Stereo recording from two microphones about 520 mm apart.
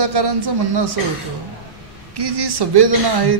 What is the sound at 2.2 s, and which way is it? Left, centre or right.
A man's voice, right.